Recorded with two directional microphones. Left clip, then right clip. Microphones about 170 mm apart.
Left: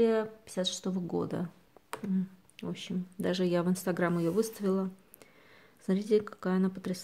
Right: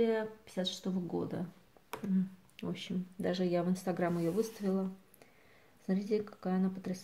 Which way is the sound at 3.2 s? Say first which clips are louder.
Left 3 dB; 35° left (ahead or behind).